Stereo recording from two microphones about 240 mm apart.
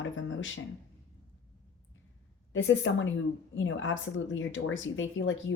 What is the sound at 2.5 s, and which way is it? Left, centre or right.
Speech, left.